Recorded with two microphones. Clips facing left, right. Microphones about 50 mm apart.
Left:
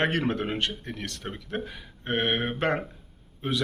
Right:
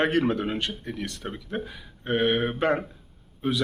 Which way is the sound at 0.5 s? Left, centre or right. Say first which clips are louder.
Even; left.